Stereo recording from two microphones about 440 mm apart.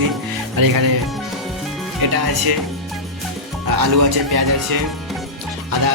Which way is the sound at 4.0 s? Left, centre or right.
Right.